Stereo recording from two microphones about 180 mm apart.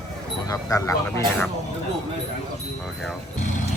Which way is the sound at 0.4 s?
20° left (ahead or behind).